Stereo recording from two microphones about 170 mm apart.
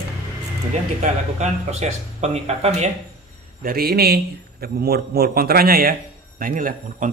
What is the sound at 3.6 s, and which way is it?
A man's voice, 60° right (ahead or behind).